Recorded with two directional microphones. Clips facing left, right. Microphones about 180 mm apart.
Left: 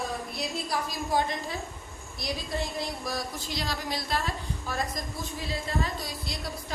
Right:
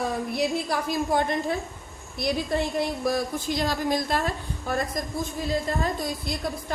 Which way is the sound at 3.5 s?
50° right (ahead or behind).